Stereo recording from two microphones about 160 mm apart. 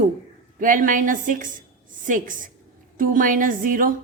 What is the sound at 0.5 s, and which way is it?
Speech, 55° right (ahead or behind).